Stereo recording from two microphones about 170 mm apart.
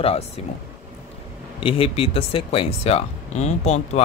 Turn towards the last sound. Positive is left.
turn(degrees=40)  # may be behind; listen again after turning